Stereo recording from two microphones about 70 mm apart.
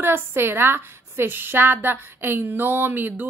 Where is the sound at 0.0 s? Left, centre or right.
Right.